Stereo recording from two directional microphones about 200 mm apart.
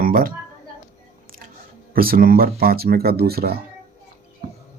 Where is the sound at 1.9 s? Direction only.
45° right (ahead or behind).